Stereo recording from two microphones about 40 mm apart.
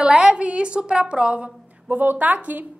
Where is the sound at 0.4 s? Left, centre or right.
Right.